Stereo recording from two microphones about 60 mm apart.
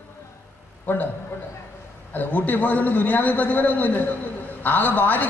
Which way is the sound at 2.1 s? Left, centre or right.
Left.